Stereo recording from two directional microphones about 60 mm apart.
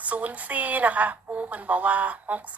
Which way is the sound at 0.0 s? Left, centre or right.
Right.